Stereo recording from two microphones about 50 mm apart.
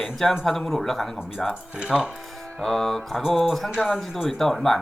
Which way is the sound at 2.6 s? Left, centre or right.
Centre.